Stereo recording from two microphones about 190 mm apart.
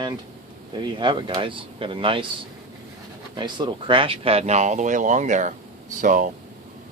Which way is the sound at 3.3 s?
25° right (ahead or behind).